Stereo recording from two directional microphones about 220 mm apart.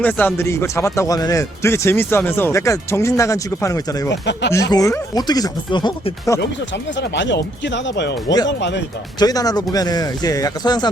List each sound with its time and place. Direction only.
0.0 s speech: 10° left (ahead or behind)
4.1 s speech: 50° left (ahead or behind)
4.5 s speech: 15° left (ahead or behind)
7.0 s speech: 50° left (ahead or behind)
9.1 s speech: 15° left (ahead or behind)